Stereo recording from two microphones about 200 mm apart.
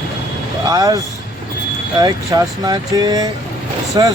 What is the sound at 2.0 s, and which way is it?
Speech, 20° right (ahead or behind).